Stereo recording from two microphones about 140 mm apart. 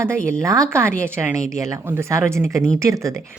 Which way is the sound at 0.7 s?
20° right (ahead or behind).